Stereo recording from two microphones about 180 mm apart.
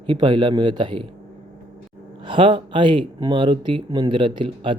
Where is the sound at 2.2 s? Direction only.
30° right (ahead or behind).